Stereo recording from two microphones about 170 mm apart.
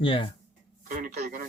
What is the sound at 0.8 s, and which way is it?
Speech, 50° right (ahead or behind).